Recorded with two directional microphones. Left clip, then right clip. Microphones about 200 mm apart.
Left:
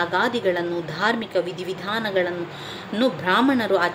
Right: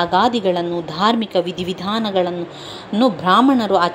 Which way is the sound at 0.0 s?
15° right (ahead or behind).